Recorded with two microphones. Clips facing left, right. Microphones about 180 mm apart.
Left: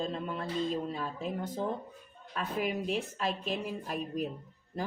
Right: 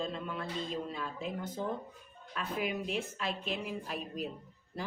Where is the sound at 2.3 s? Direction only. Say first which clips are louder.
Left 2 dB; 40° left (ahead or behind).